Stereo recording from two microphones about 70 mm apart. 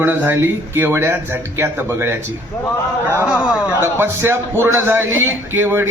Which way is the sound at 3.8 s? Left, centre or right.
Right.